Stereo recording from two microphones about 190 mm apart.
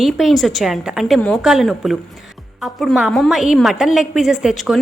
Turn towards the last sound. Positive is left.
turn(degrees=-5)  # may be behind; listen again after turning